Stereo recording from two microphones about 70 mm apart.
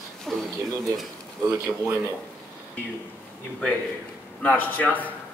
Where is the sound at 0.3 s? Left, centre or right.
Centre.